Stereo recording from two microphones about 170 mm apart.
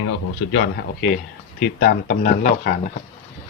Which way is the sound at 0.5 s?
90° left.